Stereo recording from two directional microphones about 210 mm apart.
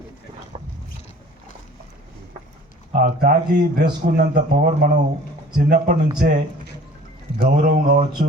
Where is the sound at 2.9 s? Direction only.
45° right (ahead or behind).